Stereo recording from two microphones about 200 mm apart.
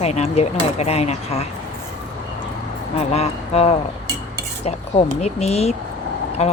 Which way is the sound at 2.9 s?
30° left (ahead or behind).